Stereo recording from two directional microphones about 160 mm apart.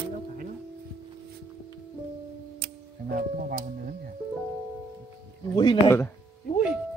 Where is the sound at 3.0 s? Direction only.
70° right (ahead or behind).